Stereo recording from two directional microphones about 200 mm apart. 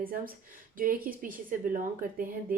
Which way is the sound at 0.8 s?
45° right (ahead or behind).